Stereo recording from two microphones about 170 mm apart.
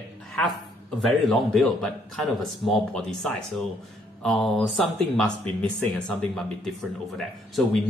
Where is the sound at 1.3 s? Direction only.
Centre (ahead or behind).